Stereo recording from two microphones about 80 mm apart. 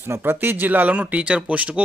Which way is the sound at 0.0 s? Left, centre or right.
Right.